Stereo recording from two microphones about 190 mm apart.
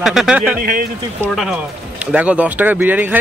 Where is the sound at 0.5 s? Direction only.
50° right (ahead or behind).